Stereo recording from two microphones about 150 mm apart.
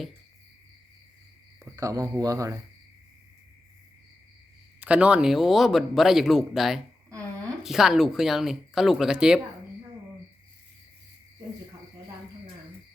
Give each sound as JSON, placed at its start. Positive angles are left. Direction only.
{"t": 1.6, "sound": "speech", "side_deg": -20}
{"t": 4.8, "sound": "speech", "side_deg": -10}